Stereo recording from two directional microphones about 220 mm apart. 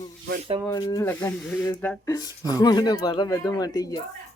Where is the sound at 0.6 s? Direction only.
15° left (ahead or behind).